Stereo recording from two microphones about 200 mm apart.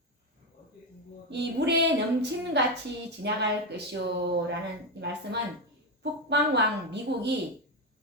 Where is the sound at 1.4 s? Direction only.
60° right (ahead or behind).